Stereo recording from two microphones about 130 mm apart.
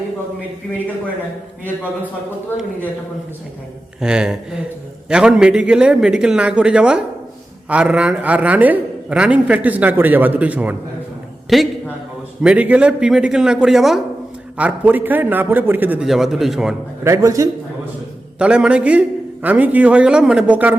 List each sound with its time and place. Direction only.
4.0 s a man's voice: 5° right (ahead or behind)
11.4 s a man's voice: centre (ahead or behind)
14.6 s a man's voice: 15° right (ahead or behind)
16.0 s a man's voice: 5° right (ahead or behind)
17.0 s a man's voice: 25° right (ahead or behind)
18.3 s a man's voice: 10° right (ahead or behind)